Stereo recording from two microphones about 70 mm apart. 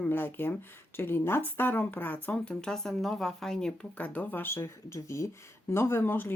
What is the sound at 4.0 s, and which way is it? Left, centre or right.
Speech, left.